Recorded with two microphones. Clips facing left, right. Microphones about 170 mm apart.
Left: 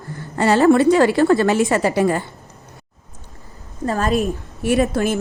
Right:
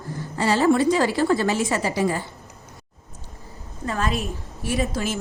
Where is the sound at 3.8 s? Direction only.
40° left (ahead or behind).